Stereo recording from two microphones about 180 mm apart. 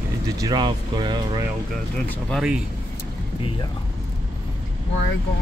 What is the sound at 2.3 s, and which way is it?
Speech, 5° right (ahead or behind).